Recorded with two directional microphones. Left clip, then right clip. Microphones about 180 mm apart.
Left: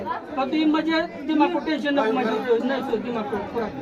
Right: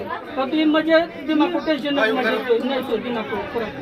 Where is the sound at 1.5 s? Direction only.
55° left (ahead or behind).